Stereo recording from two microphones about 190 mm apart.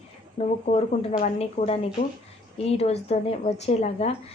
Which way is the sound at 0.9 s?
35° left (ahead or behind).